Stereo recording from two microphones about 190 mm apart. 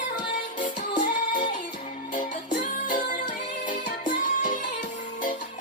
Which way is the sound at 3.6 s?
45° left (ahead or behind).